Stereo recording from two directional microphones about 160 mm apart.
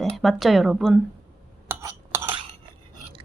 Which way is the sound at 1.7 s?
15° right (ahead or behind).